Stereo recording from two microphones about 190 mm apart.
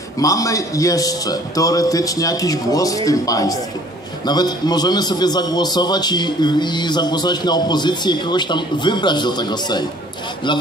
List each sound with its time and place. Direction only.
0.2 s a man's voice: 15° left (ahead or behind)